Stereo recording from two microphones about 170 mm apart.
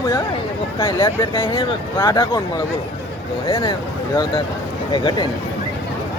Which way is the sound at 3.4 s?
25° left (ahead or behind).